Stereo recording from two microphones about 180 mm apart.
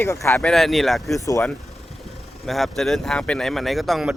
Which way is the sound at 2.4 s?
Centre (ahead or behind).